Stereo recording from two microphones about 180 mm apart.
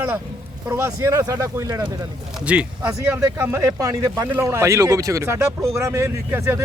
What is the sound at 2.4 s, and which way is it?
Speech, 5° right (ahead or behind).